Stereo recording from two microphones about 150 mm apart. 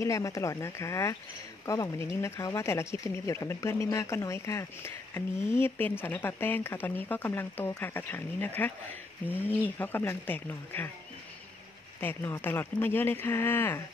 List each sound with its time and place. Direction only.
0.0 s speech: 20° left (ahead or behind)
9.8 s speech: 15° left (ahead or behind)
12.0 s speech: 15° left (ahead or behind)